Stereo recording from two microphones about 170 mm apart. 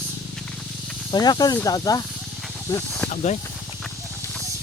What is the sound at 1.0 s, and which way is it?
Speech, 25° left (ahead or behind).